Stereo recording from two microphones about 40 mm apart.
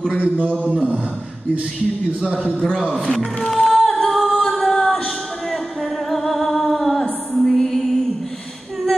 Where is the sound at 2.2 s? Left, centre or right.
Right.